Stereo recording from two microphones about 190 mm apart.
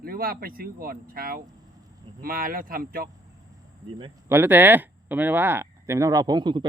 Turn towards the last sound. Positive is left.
turn(degrees=-25)  # may be behind; listen again after turning